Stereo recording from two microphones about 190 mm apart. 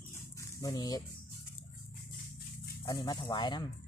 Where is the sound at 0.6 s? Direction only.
20° left (ahead or behind).